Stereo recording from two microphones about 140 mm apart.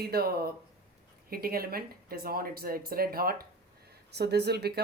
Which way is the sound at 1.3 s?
90° right.